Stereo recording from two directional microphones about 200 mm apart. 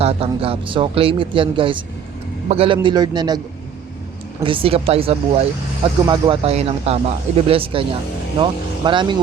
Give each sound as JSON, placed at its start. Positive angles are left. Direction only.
{"t": 0.0, "sound": "speech", "side_deg": -30}
{"t": 4.4, "sound": "speech", "side_deg": -25}